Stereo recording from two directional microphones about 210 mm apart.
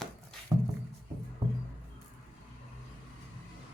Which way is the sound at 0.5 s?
20° right (ahead or behind).